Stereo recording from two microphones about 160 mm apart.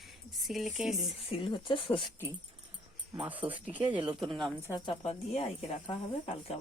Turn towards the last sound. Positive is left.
turn(degrees=35)  # may be behind; listen again after turning